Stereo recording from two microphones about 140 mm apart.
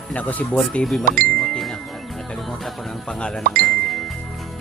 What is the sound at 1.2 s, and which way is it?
Ding, 5° left (ahead or behind).